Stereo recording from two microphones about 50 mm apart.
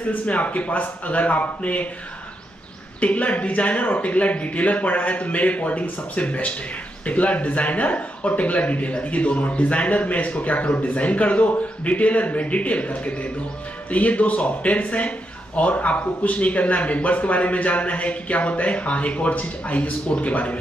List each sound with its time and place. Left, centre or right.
0.1 s speech: left
3.0 s speech: left